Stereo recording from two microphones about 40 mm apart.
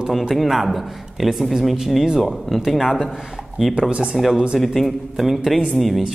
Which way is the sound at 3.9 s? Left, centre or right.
Right.